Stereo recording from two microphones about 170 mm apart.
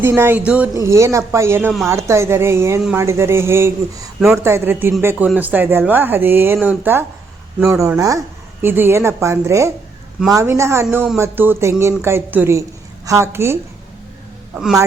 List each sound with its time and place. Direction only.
0.0 s speech: 15° right (ahead or behind)
14.5 s a man's voice: 5° right (ahead or behind)